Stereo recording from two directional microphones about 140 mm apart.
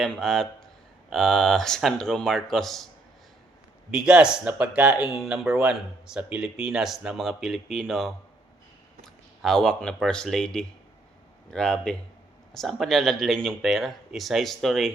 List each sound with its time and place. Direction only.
0.0 s speech: 5° left (ahead or behind)
3.9 s speech: 5° right (ahead or behind)
9.4 s speech: 5° left (ahead or behind)